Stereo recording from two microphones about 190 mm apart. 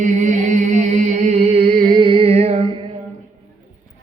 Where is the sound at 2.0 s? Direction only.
30° right (ahead or behind).